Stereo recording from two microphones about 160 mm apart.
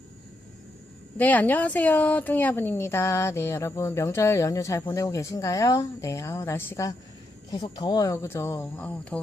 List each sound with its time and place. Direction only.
1.2 s speech: 10° left (ahead or behind)